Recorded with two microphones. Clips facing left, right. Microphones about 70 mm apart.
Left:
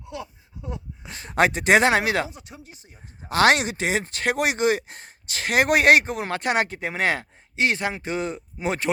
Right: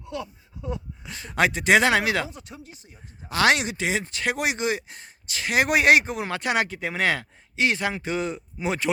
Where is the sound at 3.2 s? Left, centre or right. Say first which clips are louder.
Left 3 dB; left.